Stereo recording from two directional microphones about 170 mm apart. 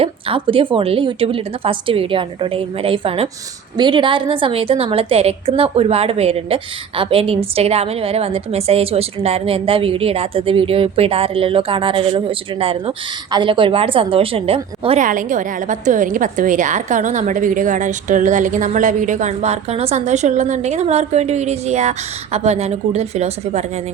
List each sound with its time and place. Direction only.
0.0 s a woman's voice: 30° right (ahead or behind)
15.0 s a woman's voice: 50° right (ahead or behind)